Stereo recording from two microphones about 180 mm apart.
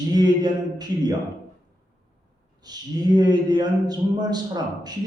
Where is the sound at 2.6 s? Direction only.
20° right (ahead or behind).